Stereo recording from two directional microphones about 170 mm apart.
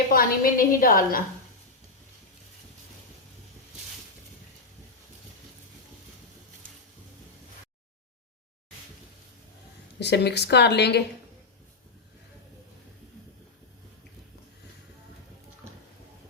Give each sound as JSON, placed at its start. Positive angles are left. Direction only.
{"t": 0.1, "sound": "a woman's voice", "side_deg": 60}
{"t": 10.0, "sound": "speech", "side_deg": 80}